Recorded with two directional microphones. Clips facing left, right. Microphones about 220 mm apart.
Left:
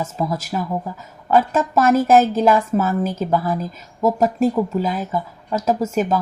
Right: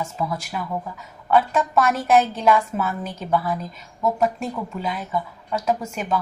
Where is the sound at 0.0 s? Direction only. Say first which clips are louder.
Left 4 dB; 40° left (ahead or behind).